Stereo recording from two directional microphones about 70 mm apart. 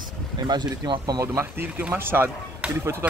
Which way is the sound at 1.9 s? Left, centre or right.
Right.